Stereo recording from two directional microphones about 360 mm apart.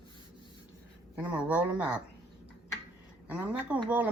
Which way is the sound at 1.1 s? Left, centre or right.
Centre.